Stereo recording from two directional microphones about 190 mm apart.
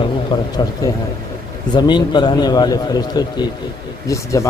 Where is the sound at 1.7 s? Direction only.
25° left (ahead or behind).